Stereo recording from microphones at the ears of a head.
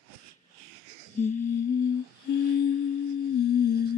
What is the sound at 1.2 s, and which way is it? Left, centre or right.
Humming, left.